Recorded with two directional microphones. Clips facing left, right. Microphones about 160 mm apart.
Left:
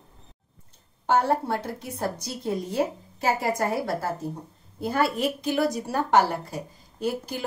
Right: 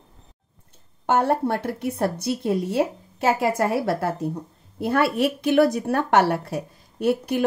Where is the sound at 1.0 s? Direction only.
60° right (ahead or behind).